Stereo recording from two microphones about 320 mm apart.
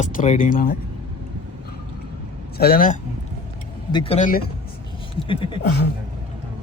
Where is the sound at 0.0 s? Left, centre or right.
Left.